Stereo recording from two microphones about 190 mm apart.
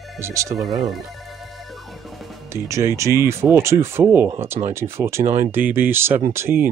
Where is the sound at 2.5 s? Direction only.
15° right (ahead or behind).